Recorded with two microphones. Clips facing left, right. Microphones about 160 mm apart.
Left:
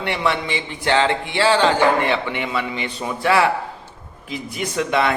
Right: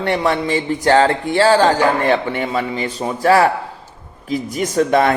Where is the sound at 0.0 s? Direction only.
40° right (ahead or behind).